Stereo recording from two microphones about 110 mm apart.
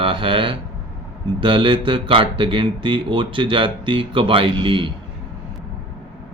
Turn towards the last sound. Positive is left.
turn(degrees=-50)  # may be behind; listen again after turning